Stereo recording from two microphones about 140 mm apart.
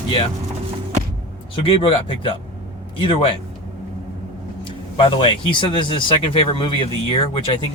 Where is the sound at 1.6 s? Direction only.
40° left (ahead or behind).